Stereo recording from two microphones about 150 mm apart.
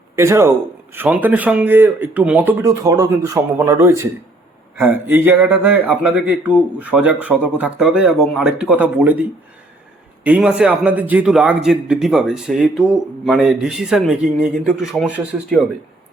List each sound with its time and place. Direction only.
0.2 s speech: 15° right (ahead or behind)
10.2 s a man's voice: 10° right (ahead or behind)